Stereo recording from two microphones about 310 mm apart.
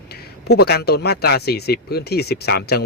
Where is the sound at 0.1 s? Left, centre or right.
Left.